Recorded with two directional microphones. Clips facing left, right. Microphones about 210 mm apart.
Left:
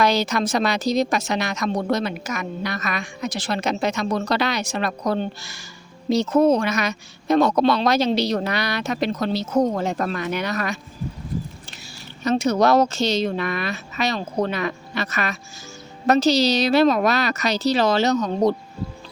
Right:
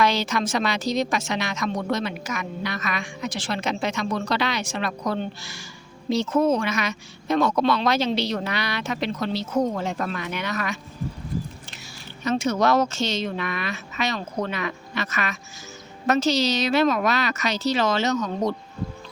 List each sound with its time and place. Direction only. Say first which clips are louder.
0.0 s a woman's voice: left 3 dB; 40° left (ahead or behind)
11.8 s a woman's voice: left 4 dB; 35° left (ahead or behind)